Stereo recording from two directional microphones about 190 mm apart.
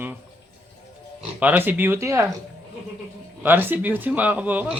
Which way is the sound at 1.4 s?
10° right (ahead or behind).